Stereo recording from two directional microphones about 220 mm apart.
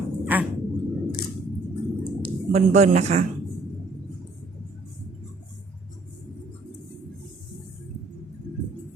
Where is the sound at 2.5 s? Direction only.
30° right (ahead or behind).